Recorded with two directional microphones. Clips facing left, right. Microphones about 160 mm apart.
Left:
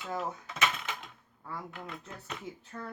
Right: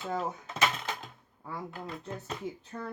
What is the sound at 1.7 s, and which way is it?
Speech, 35° right (ahead or behind).